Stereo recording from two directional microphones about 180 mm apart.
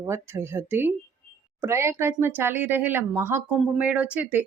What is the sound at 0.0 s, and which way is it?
Speech, 15° right (ahead or behind).